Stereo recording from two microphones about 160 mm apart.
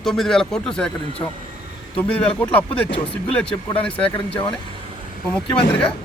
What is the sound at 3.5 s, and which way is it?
Speech, 35° left (ahead or behind).